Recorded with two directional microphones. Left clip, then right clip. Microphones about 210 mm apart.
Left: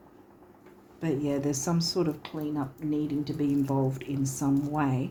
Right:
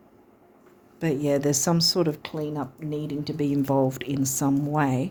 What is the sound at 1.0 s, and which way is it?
Speech, 55° right (ahead or behind).